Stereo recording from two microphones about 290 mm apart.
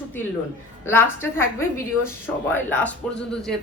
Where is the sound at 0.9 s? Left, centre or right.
Centre.